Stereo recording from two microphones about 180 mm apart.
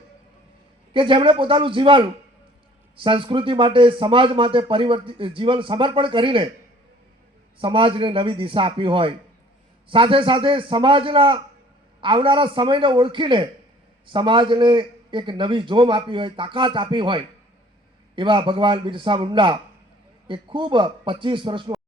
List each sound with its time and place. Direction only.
0.9 s speech: 30° right (ahead or behind)
7.6 s speech: 30° right (ahead or behind)